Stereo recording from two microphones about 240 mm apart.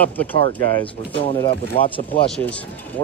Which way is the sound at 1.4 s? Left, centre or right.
Left.